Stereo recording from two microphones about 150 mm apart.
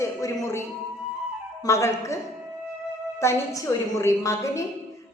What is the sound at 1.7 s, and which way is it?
Speech, 20° left (ahead or behind).